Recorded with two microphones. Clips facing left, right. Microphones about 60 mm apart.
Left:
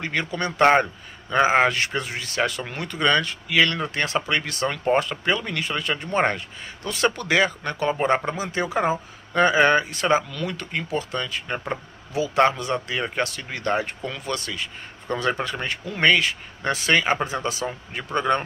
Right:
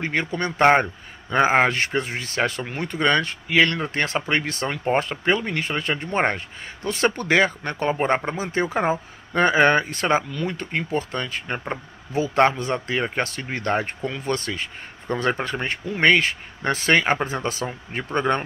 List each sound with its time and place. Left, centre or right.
0.0 s speech: right